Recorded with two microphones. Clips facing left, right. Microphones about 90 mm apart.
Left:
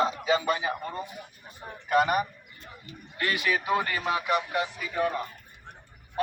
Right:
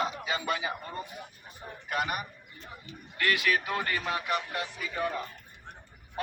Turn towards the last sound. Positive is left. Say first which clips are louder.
# left 4 dB
turn(degrees=10)  # may be behind; listen again after turning